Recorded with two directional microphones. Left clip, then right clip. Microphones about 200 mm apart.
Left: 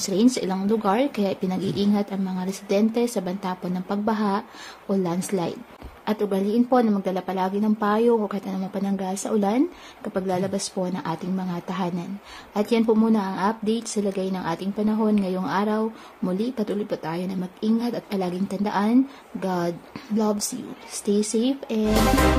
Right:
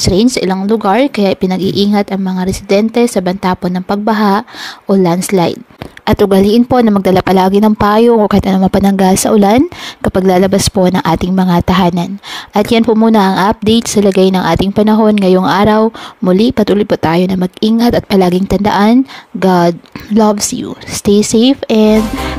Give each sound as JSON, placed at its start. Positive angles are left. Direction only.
{"t": 0.0, "sound": "a woman's voice", "side_deg": -40}